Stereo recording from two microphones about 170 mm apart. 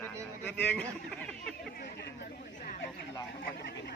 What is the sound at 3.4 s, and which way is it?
Speech, 65° left (ahead or behind).